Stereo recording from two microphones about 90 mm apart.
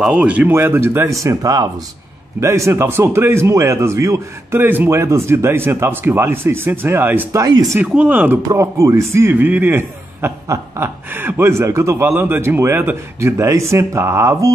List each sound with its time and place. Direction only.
0.0 s speech: 10° right (ahead or behind)
0.5 s a man's voice: 25° right (ahead or behind)
4.6 s speech: 25° right (ahead or behind)
7.3 s a man's voice: 40° right (ahead or behind)
7.8 s speech: 15° right (ahead or behind)
8.4 s speech: 40° right (ahead or behind)